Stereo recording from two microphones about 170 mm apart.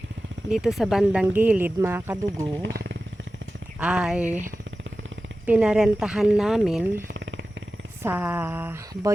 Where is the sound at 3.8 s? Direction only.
5° right (ahead or behind).